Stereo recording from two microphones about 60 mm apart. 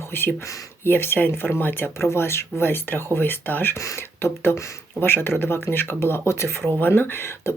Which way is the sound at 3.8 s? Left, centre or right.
Left.